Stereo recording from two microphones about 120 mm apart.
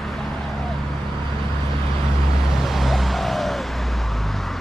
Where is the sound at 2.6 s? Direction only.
Centre (ahead or behind).